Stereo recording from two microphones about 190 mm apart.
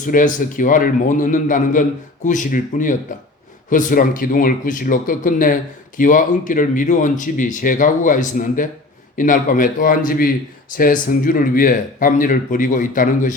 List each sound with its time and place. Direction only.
0.1 s speech: 45° left (ahead or behind)